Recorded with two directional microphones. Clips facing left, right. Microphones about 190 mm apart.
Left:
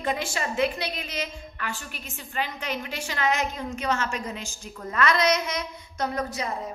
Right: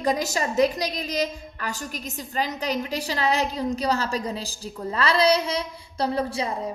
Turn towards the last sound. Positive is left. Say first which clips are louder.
# right 4 dB
turn(degrees=-30)  # may be behind; listen again after turning